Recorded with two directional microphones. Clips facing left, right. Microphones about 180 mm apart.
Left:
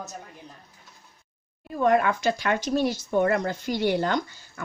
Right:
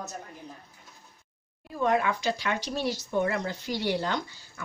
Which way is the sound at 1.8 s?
50° left (ahead or behind).